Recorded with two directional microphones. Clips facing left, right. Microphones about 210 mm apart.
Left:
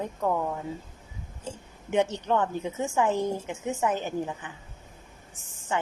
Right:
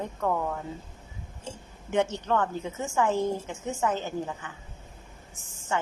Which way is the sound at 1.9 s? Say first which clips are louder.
Left 1 dB; 15° left (ahead or behind).